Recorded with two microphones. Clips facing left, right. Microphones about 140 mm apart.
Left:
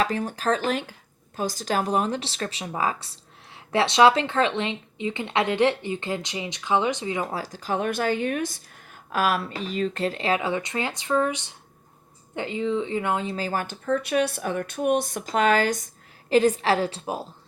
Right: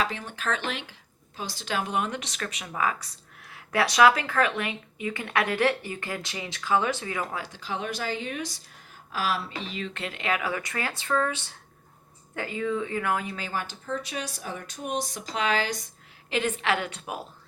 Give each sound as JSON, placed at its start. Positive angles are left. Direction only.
{"t": 0.0, "sound": "speech", "side_deg": 40}
{"t": 9.5, "sound": "speech", "side_deg": 40}
{"t": 16.3, "sound": "speech", "side_deg": 35}